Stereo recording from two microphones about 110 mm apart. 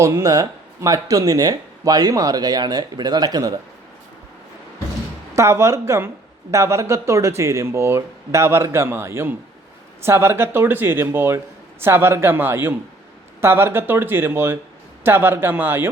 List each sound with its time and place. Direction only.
0.0 s speech: 30° right (ahead or behind)
5.3 s speech: 25° right (ahead or behind)